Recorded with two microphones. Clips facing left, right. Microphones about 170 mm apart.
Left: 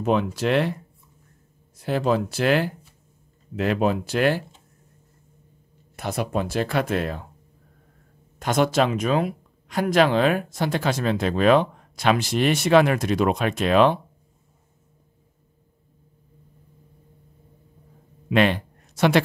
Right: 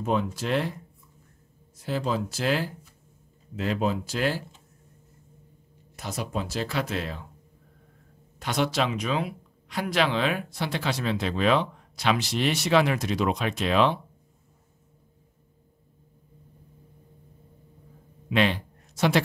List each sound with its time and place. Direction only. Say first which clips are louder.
0.0 s speech: left 5 dB; 70° left (ahead or behind)
1.8 s speech: left 6 dB; 65° left (ahead or behind)
5.9 s speech: left 6 dB; 60° left (ahead or behind)
8.4 s speech: left 6 dB; 50° left (ahead or behind)
18.3 s a sound: left 4 dB; 55° left (ahead or behind)